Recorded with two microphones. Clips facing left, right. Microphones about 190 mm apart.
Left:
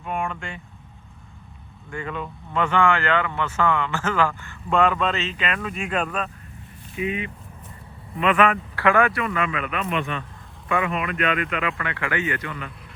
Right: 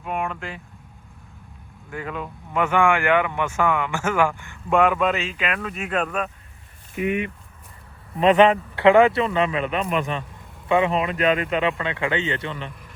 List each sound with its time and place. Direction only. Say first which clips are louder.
0.0 s speech: right 1 dB; centre (ahead or behind)
1.9 s speech: even; 5° right (ahead or behind)
7.0 s speech: right 3 dB; 65° right (ahead or behind)
8.2 s speech: right 5 dB; 30° right (ahead or behind)
10.7 s speech: right 5 dB; 25° right (ahead or behind)